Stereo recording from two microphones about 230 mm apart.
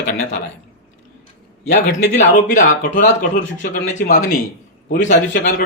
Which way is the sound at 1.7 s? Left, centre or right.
Left.